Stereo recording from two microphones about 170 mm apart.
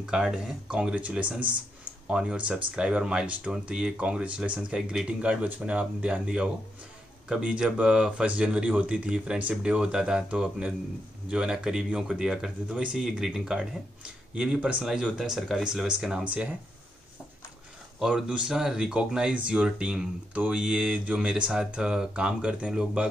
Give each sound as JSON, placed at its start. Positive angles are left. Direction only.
{"t": 0.0, "sound": "speech", "side_deg": -5}
{"t": 17.9, "sound": "speech", "side_deg": -5}